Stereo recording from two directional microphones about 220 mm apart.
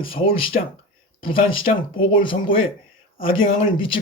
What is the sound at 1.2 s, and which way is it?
Speech, 25° left (ahead or behind).